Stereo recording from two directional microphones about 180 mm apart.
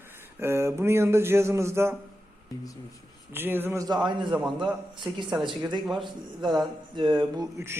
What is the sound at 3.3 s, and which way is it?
Speech, 10° right (ahead or behind).